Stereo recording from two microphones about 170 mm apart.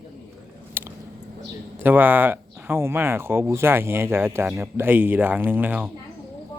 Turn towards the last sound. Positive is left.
turn(degrees=-10)  # may be behind; listen again after turning